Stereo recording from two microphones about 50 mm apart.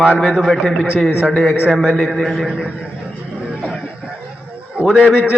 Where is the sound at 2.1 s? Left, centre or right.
Centre.